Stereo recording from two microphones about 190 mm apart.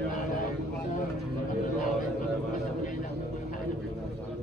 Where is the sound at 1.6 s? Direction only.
45° left (ahead or behind).